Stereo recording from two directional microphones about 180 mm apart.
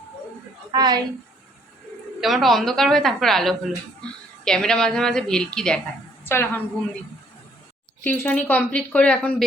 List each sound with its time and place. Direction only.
0.7 s speech: 25° right (ahead or behind)
2.2 s a woman's voice: centre (ahead or behind)
8.0 s speech: 10° left (ahead or behind)